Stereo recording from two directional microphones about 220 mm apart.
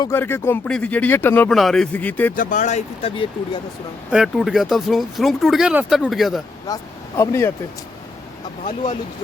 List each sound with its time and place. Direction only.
0.0 s speech: 10° left (ahead or behind)
2.3 s speech: 35° left (ahead or behind)
4.1 s speech: centre (ahead or behind)
6.7 s speech: 15° left (ahead or behind)
8.6 s speech: 30° left (ahead or behind)